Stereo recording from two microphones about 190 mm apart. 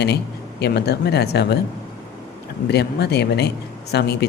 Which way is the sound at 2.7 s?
60° left (ahead or behind).